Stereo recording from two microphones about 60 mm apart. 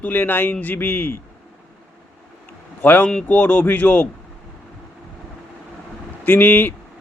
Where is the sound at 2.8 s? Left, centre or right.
Left.